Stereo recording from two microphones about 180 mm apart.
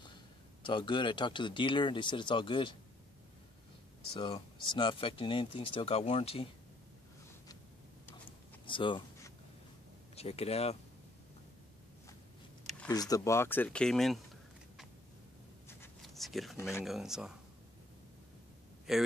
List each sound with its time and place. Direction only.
0.7 s speech: 25° left (ahead or behind)
4.2 s speech: 25° left (ahead or behind)
8.3 s a sound: 30° left (ahead or behind)
10.1 s speech: 35° left (ahead or behind)
12.9 s speech: 20° left (ahead or behind); by 14.2 s centre (ahead or behind)
16.0 s a sound: centre (ahead or behind)
16.8 s speech: centre (ahead or behind)
18.9 s speech: 5° right (ahead or behind)